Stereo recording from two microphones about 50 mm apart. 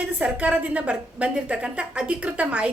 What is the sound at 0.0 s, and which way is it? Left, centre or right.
A woman's voice, right.